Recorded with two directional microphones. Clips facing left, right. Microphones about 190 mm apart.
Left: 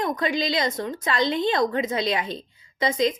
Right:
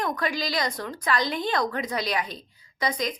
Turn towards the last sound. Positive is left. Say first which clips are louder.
# left 6 dB
turn(degrees=25)  # may be behind; listen again after turning